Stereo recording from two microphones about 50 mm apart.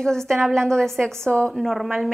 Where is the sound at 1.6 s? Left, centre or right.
Centre.